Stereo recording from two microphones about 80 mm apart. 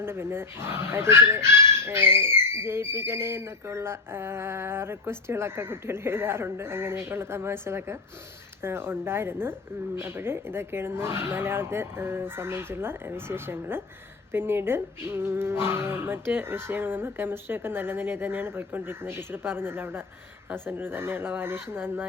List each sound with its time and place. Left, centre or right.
0.0 s speech: right